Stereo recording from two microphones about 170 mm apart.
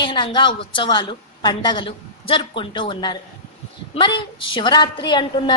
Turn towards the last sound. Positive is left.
turn(degrees=25)  # may be behind; listen again after turning